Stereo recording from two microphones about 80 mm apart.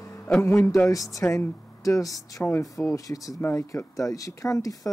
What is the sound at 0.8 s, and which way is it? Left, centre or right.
Speech, left.